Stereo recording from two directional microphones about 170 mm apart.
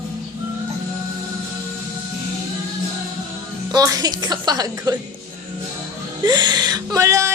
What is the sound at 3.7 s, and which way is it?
Speech, 20° right (ahead or behind).